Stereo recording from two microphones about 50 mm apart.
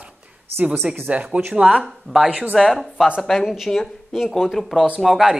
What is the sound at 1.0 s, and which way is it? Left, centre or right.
Speech, right.